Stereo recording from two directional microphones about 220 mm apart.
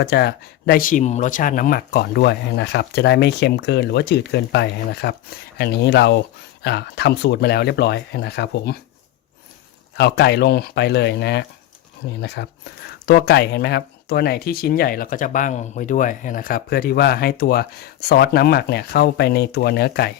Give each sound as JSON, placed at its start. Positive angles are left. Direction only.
{"t": 0.0, "sound": "speech", "side_deg": 50}
{"t": 10.0, "sound": "speech", "side_deg": 50}